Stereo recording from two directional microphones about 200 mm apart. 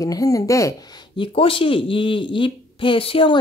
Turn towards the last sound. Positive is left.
turn(degrees=25)  # may be behind; listen again after turning